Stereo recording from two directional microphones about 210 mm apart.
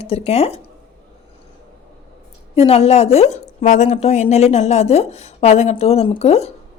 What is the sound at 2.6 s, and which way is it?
A woman's voice, 30° left (ahead or behind).